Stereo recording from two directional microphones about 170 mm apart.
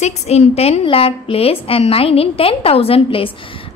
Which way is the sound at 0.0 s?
40° left (ahead or behind).